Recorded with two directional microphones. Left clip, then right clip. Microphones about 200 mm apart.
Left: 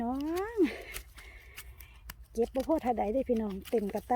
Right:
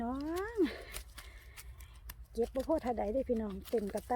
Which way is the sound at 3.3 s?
20° left (ahead or behind).